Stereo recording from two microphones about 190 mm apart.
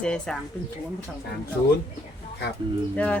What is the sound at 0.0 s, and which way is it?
Speech, 5° left (ahead or behind).